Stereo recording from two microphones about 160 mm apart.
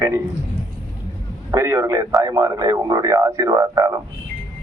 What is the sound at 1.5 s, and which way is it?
A man's voice, 15° right (ahead or behind).